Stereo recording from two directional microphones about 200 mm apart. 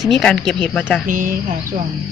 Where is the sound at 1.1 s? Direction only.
40° right (ahead or behind).